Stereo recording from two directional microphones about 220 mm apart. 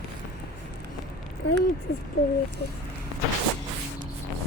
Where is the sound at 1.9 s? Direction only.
45° left (ahead or behind).